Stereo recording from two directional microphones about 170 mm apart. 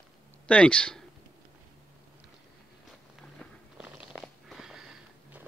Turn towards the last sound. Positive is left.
turn(degrees=-5)  # may be behind; listen again after turning